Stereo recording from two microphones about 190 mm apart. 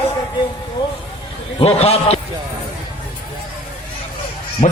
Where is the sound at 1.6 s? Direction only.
30° left (ahead or behind).